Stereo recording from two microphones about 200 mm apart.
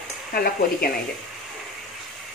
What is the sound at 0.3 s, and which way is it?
Stir, 50° left (ahead or behind).